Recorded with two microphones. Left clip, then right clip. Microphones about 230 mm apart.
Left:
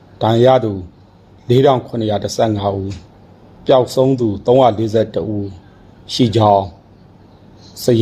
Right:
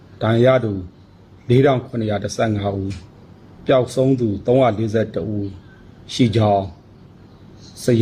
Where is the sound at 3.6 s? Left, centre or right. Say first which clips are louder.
Left 4 dB; centre.